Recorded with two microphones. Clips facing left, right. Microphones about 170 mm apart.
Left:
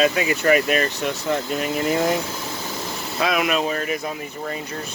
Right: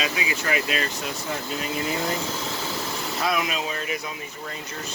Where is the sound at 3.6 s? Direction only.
45° left (ahead or behind).